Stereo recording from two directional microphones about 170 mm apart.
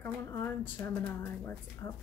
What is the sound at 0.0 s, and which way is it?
A woman's voice, 15° left (ahead or behind).